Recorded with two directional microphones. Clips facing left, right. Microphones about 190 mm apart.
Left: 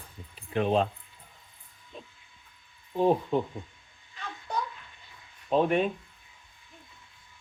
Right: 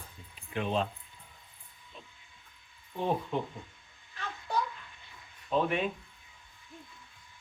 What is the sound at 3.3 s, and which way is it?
Speech, 35° left (ahead or behind).